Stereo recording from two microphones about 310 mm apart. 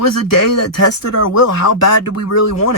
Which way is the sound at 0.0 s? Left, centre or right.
Left.